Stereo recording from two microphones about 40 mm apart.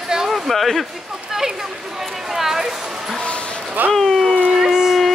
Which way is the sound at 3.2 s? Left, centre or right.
Left.